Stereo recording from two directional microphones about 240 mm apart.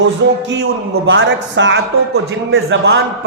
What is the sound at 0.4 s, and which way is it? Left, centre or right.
A man's voice, right.